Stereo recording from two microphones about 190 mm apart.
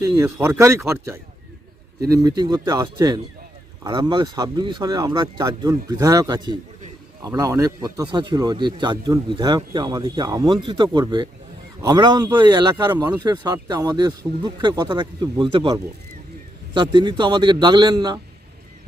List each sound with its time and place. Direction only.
0.0 s speech: 15° right (ahead or behind)